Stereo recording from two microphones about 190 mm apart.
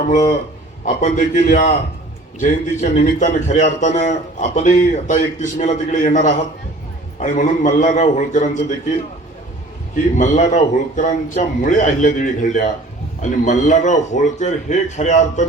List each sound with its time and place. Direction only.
0.1 s a man's voice: 40° left (ahead or behind)